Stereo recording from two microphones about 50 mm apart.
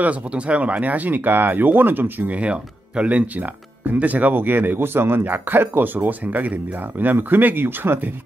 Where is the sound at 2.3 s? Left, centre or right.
Right.